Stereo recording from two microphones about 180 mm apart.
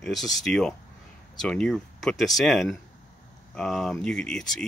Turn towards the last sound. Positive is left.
turn(degrees=5)  # may be behind; listen again after turning